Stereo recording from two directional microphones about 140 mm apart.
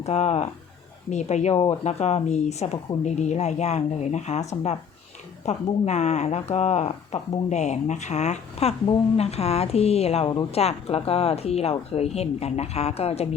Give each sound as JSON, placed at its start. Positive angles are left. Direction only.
{"t": 0.0, "sound": "speech", "side_deg": 50}